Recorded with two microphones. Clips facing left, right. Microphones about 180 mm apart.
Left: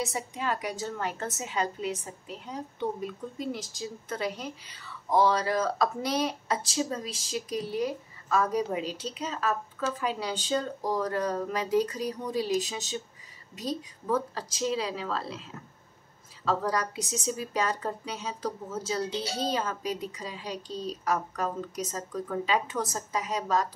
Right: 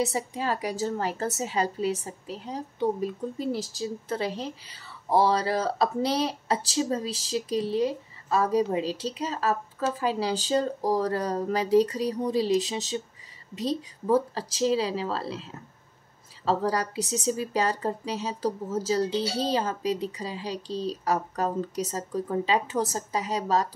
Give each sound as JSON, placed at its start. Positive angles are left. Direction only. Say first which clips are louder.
{"t": 0.0, "sound": "a woman's voice", "louder": "right 4 dB", "side_deg": -35}
{"t": 16.4, "sound": "a woman's voice", "louder": "right 3 dB", "side_deg": -30}